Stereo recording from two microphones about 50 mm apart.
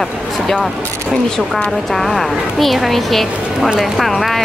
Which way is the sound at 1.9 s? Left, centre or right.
Centre.